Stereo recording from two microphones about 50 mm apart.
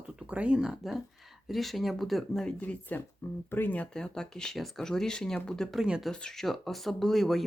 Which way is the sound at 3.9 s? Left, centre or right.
Centre.